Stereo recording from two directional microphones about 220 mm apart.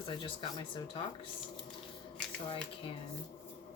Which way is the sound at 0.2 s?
20° left (ahead or behind).